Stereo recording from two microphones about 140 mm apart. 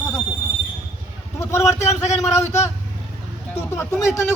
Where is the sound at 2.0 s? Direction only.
55° left (ahead or behind).